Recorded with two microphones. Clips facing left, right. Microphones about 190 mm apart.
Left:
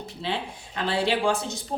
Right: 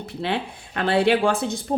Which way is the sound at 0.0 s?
60° right (ahead or behind).